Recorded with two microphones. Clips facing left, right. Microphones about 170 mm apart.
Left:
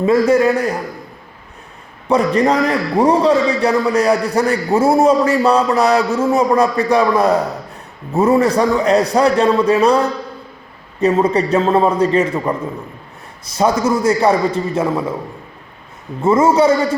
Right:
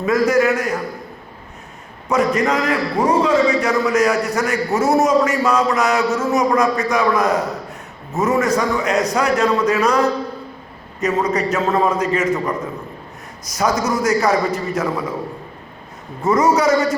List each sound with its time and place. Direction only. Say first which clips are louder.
0.0 s a man's voice: left 3 dB; 30° left (ahead or behind)
2.0 s a man's voice: left 3 dB; 30° left (ahead or behind)
11.0 s a man's voice: left 5 dB; 30° left (ahead or behind)
16.2 s a man's voice: left 3 dB; 25° left (ahead or behind)